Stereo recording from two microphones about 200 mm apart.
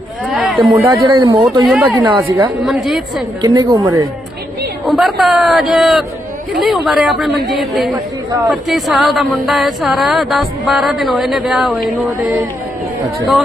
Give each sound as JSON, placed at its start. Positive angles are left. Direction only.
{"t": 0.3, "sound": "a sound", "side_deg": 0}
{"t": 0.7, "sound": "speech", "side_deg": -20}
{"t": 1.6, "sound": "speech", "side_deg": 0}
{"t": 2.0, "sound": "a woman's voice", "side_deg": -15}
{"t": 2.6, "sound": "speech", "side_deg": 0}
{"t": 3.4, "sound": "speech", "side_deg": -20}
{"t": 4.9, "sound": "speech", "side_deg": 0}